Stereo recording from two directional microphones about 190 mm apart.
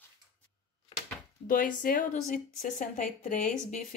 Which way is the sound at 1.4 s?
45° left (ahead or behind).